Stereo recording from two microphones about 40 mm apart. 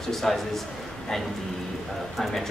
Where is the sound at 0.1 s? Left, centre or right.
Centre.